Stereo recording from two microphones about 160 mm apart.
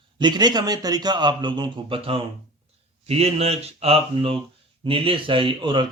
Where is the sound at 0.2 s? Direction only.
25° right (ahead or behind).